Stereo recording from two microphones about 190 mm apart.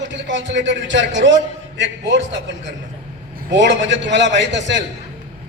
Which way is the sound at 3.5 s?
70° right (ahead or behind).